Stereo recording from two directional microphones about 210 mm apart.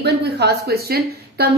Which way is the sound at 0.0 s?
55° right (ahead or behind).